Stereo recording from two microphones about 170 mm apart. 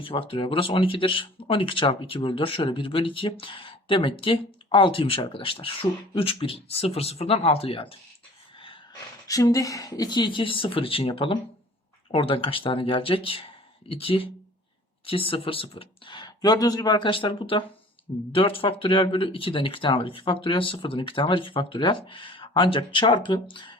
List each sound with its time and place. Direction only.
0.0 s speech: 30° left (ahead or behind)